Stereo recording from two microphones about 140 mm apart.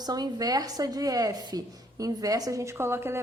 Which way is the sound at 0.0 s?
30° right (ahead or behind).